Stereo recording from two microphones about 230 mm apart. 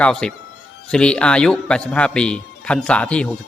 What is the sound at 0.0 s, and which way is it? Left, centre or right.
A man's voice, centre.